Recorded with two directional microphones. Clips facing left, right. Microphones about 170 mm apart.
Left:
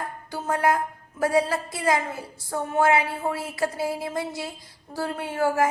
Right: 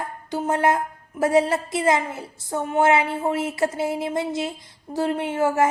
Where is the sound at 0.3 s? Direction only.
20° right (ahead or behind).